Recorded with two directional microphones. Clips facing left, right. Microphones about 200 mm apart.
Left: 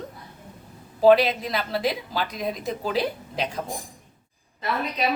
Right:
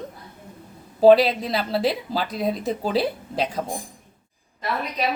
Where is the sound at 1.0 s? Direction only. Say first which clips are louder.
Right 3 dB; 30° right (ahead or behind).